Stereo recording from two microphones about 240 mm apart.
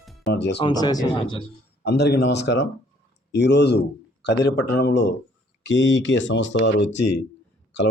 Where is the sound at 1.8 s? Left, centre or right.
Left.